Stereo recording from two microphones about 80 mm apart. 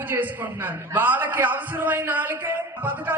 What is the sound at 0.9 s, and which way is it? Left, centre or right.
A man's voice, right.